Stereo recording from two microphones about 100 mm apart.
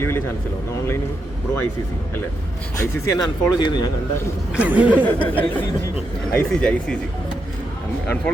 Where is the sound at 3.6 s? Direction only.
45° left (ahead or behind).